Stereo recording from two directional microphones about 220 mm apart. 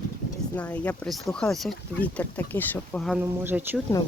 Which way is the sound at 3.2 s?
10° right (ahead or behind).